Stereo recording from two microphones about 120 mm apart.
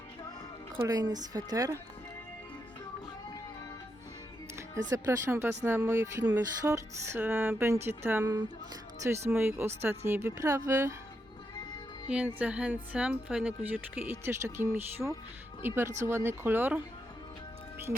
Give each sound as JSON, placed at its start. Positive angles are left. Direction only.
{"t": 0.9, "sound": "speech", "side_deg": -30}
{"t": 4.5, "sound": "speech", "side_deg": -25}
{"t": 12.0, "sound": "speech", "side_deg": -10}